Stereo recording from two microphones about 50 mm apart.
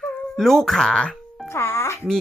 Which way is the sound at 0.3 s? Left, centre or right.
Centre.